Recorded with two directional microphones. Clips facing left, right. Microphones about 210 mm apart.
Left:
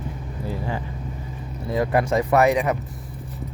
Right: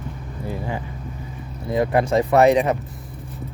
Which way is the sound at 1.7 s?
25° right (ahead or behind).